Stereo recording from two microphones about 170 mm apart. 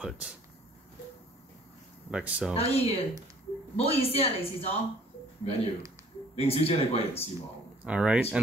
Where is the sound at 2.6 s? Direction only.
35° left (ahead or behind).